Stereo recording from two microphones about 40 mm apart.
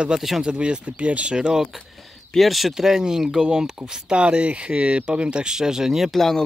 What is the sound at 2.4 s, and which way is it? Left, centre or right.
Speech, centre.